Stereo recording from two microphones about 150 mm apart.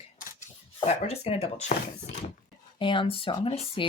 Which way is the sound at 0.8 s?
45° left (ahead or behind).